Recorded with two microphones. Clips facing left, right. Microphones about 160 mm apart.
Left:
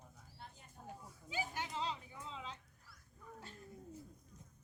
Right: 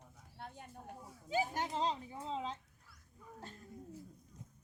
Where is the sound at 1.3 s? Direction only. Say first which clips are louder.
Right 7 dB; 40° right (ahead or behind).